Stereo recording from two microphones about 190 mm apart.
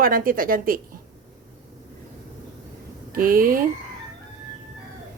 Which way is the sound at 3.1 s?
50° right (ahead or behind).